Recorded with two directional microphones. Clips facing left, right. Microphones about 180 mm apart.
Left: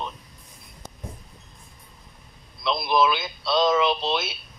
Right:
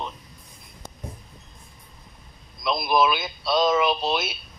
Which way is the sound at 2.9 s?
10° right (ahead or behind).